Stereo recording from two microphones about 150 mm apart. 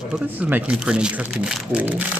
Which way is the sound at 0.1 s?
10° right (ahead or behind).